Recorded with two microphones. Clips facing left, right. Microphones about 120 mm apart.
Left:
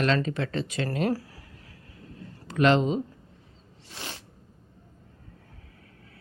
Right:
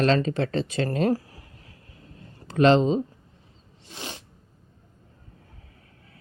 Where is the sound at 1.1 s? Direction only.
20° right (ahead or behind).